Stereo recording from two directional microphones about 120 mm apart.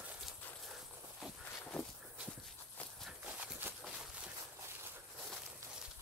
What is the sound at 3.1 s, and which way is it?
Horse, 10° right (ahead or behind).